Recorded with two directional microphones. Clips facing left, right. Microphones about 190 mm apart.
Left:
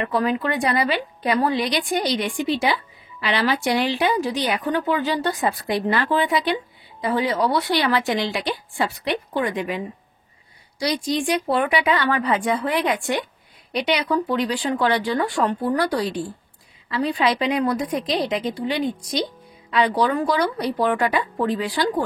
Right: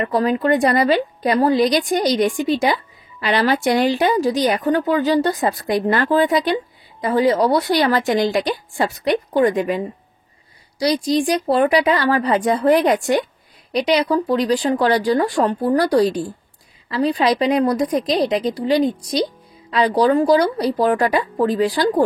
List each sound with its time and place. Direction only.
0.0 s a woman's voice: 40° right (ahead or behind)